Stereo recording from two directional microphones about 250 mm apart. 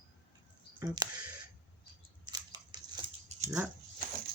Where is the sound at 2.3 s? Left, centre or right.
Centre.